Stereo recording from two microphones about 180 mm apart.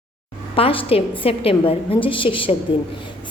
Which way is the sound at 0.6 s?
30° left (ahead or behind).